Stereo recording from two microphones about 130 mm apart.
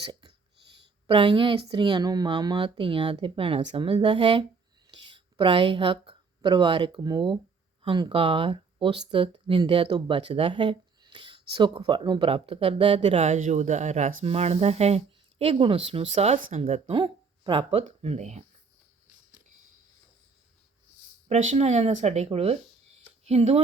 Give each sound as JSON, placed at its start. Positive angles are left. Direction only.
{"t": 0.1, "sound": "a sound", "side_deg": -30}
{"t": 1.0, "sound": "speech", "side_deg": -40}
{"t": 14.3, "sound": "speech", "side_deg": -55}
{"t": 16.9, "sound": "speech", "side_deg": -40}
{"t": 21.2, "sound": "speech", "side_deg": -60}